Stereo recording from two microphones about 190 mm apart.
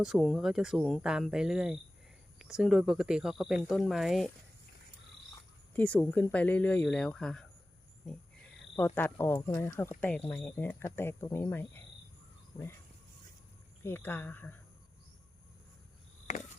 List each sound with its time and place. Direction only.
0.0 s speech: centre (ahead or behind)
5.7 s speech: 10° left (ahead or behind)
9.0 s speech: 10° left (ahead or behind)
13.8 s speech: 10° left (ahead or behind)
16.3 s a sound: 40° left (ahead or behind)